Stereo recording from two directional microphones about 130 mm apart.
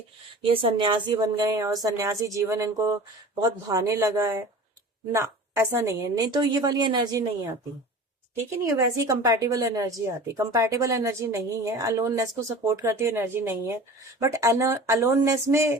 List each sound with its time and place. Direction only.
0.4 s speech: 45° right (ahead or behind)
8.6 s speech: 25° right (ahead or behind)